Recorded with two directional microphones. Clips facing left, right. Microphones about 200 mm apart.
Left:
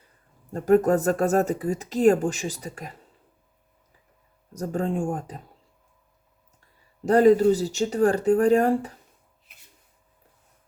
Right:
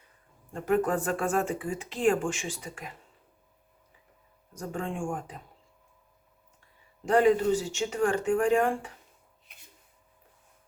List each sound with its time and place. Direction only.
0.5 s speech: 40° left (ahead or behind)
4.5 s speech: 40° left (ahead or behind)
7.0 s speech: 40° left (ahead or behind)